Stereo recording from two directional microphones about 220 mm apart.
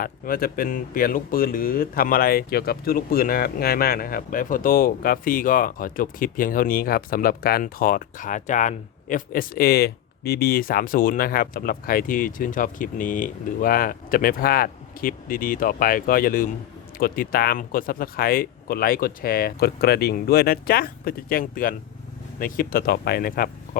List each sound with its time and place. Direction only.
0.0 s speech: 40° left (ahead or behind)